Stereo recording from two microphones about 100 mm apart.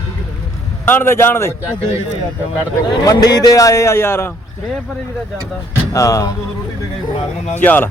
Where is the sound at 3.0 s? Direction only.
40° left (ahead or behind); by 4.4 s 25° left (ahead or behind).